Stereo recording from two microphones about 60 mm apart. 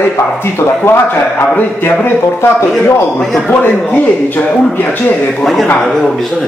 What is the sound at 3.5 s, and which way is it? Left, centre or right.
Speech, left.